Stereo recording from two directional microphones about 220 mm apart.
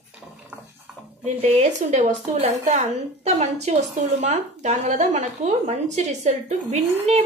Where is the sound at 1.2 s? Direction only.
30° right (ahead or behind).